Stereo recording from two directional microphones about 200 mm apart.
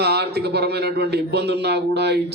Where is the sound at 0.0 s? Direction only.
55° right (ahead or behind).